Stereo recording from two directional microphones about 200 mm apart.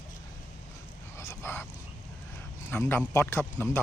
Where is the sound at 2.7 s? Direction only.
10° left (ahead or behind).